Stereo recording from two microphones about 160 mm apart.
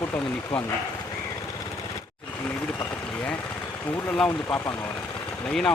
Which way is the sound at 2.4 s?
10° left (ahead or behind).